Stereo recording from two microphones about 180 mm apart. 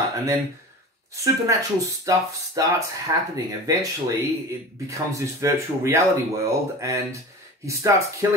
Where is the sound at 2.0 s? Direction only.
20° right (ahead or behind).